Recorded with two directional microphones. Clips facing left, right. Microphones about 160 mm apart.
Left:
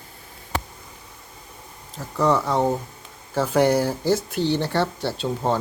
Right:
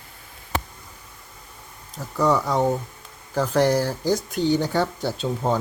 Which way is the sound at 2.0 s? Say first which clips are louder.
Even; centre (ahead or behind).